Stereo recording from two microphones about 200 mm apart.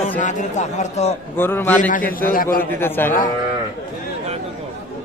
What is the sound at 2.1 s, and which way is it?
Speech, 45° left (ahead or behind).